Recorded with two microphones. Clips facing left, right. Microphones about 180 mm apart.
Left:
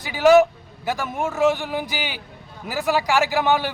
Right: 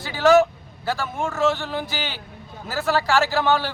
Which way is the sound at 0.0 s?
15° left (ahead or behind).